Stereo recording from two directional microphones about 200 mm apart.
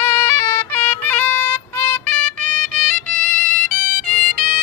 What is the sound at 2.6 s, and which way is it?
Music, 40° right (ahead or behind).